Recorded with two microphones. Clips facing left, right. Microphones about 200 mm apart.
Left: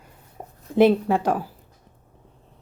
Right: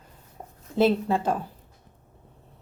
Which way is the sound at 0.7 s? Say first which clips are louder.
Left 5 dB; 15° left (ahead or behind).